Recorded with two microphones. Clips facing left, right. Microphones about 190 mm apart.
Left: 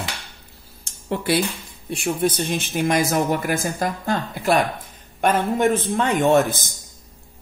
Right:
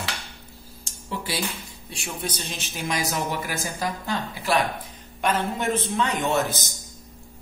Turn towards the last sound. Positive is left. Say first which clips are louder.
# left 7 dB
turn(degrees=50)  # may be behind; listen again after turning